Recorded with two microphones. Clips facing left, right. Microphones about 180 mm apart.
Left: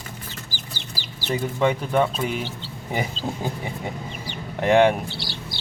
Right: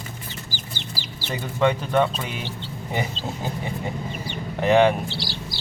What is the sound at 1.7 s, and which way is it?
Speech, 10° left (ahead or behind).